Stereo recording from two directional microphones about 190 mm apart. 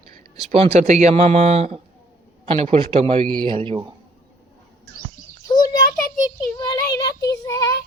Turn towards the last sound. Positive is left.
turn(degrees=15)  # may be behind; listen again after turning